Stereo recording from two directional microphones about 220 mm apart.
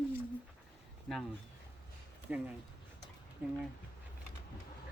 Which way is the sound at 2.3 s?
5° right (ahead or behind).